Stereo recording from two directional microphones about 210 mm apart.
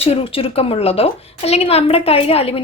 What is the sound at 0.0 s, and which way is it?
A woman's voice, 25° left (ahead or behind).